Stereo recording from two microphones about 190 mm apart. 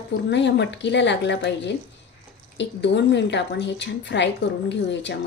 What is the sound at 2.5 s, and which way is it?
A woman's voice, 65° left (ahead or behind).